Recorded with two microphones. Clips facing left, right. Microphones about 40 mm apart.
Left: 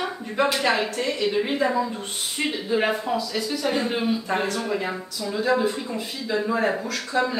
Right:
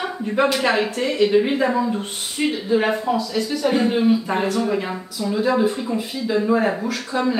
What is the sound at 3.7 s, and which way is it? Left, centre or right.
A woman's voice, centre.